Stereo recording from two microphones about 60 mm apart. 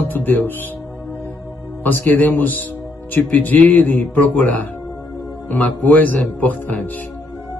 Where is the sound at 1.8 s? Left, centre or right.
Left.